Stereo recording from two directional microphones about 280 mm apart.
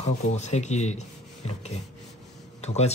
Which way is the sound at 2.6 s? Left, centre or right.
Left.